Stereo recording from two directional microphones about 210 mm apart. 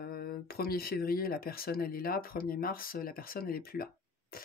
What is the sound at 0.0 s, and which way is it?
Speech, 45° left (ahead or behind).